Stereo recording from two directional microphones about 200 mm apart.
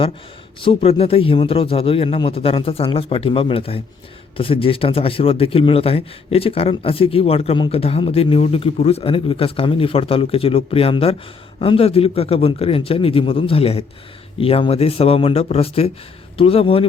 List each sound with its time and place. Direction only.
0.6 s a man's voice: 30° left (ahead or behind)